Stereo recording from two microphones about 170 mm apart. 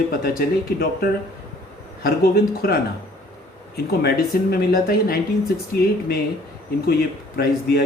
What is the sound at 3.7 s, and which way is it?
Speech, 65° left (ahead or behind).